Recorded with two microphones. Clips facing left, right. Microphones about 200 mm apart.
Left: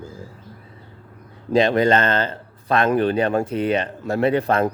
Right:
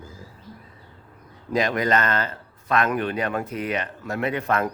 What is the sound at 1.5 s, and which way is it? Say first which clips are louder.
Speech: left 6 dB; 30° left (ahead or behind).